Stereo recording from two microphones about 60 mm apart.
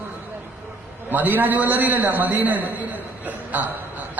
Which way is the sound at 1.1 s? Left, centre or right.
Right.